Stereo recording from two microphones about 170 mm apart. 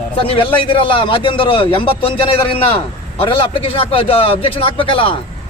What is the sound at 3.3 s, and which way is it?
Speech, 30° left (ahead or behind).